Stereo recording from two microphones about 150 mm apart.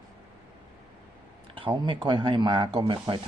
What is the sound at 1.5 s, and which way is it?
Speech, 35° right (ahead or behind).